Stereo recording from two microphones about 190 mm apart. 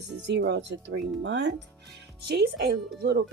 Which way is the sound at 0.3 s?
65° right (ahead or behind).